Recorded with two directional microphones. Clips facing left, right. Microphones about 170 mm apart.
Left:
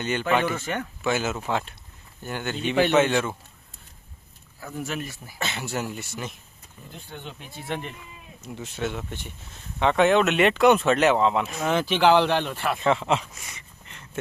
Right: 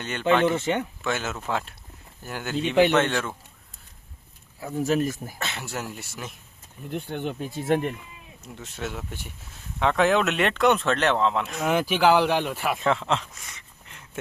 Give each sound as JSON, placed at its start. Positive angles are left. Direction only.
{"t": 0.0, "sound": "speech", "side_deg": 0}
{"t": 0.4, "sound": "speech", "side_deg": -20}
{"t": 1.0, "sound": "speech", "side_deg": 5}
{"t": 4.6, "sound": "speech", "side_deg": -35}
{"t": 5.4, "sound": "speech", "side_deg": 0}
{"t": 6.9, "sound": "speech", "side_deg": -60}
{"t": 7.3, "sound": "speech", "side_deg": -40}
{"t": 8.4, "sound": "speech", "side_deg": 0}
{"t": 11.7, "sound": "speech", "side_deg": -10}